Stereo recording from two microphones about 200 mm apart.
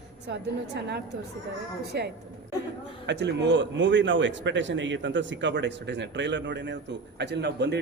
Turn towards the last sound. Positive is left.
turn(degrees=-55)  # may be behind; listen again after turning